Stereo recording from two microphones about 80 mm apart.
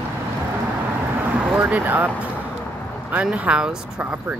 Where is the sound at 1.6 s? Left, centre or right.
Right.